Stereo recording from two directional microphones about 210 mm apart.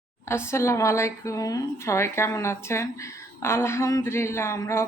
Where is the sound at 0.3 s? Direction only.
10° left (ahead or behind).